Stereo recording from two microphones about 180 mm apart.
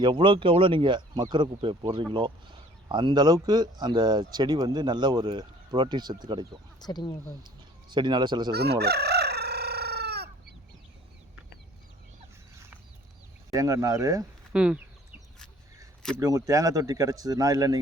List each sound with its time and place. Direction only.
0.0 s speech: 25° right (ahead or behind)
6.7 s speech: 25° left (ahead or behind)
7.9 s speech: 25° right (ahead or behind)
8.5 s chicken: 65° right (ahead or behind)
13.5 s speech: 20° right (ahead or behind)
14.5 s speech: 5° right (ahead or behind)
16.2 s speech: 15° right (ahead or behind)